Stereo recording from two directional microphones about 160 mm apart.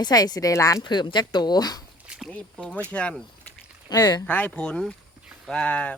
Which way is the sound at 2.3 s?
5° left (ahead or behind).